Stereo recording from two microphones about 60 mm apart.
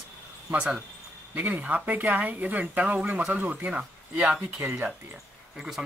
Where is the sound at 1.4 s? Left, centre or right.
Right.